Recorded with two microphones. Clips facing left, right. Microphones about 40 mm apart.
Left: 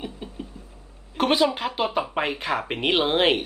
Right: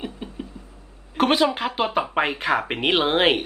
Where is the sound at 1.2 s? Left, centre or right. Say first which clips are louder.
Right 2 dB; centre.